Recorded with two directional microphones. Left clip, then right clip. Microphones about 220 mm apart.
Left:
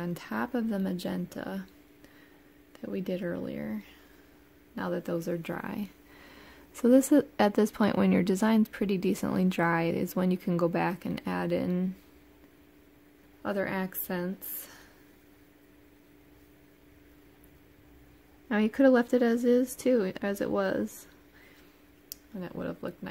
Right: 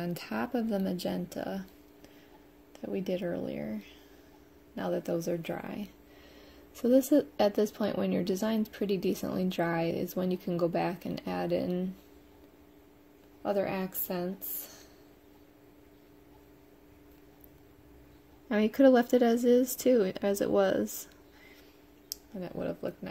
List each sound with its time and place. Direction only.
0.0 s speech: 10° left (ahead or behind)
2.7 s a woman's voice: 20° left (ahead or behind)
4.7 s a woman's voice: 25° left (ahead or behind)
13.4 s a woman's voice: 30° left (ahead or behind)
18.5 s speech: 15° left (ahead or behind)
22.1 s speech: 20° left (ahead or behind)